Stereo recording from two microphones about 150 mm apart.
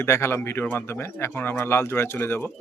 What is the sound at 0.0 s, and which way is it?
Speech, 15° left (ahead or behind).